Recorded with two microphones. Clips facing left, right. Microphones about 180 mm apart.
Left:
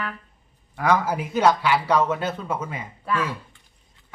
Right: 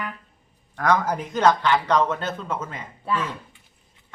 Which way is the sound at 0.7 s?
10° left (ahead or behind).